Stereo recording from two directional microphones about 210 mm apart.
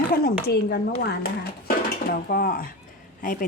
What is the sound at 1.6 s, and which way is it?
Dishes, 45° left (ahead or behind).